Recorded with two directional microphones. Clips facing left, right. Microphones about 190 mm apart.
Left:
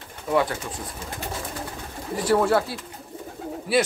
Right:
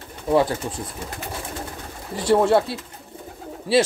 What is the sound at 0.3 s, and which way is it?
Speech, 30° right (ahead or behind).